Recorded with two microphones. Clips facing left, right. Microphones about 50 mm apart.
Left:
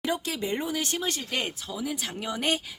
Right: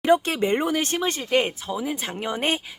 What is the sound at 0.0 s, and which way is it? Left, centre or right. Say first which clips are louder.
Speech: right 10 dB; right.